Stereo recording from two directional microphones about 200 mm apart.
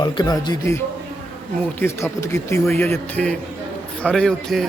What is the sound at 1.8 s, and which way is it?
A man's voice, 15° left (ahead or behind).